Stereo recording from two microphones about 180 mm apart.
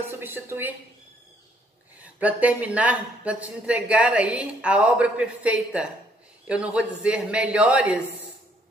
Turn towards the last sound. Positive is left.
turn(degrees=-5)  # may be behind; listen again after turning